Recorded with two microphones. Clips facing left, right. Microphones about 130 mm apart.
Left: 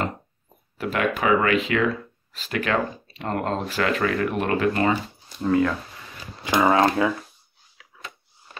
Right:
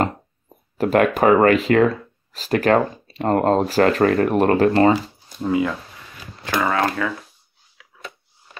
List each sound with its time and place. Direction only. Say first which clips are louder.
0.7 s speech: right 8 dB; 45° right (ahead or behind)
5.4 s speech: even; 10° right (ahead or behind)
6.5 s speech: left 2 dB; 20° left (ahead or behind)